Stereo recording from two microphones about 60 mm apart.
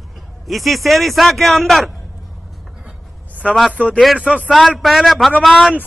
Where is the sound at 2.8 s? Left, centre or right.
Right.